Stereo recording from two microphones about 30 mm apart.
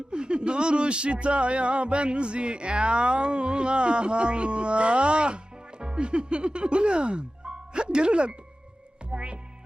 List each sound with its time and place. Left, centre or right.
0.1 s speech: right
9.1 s music: right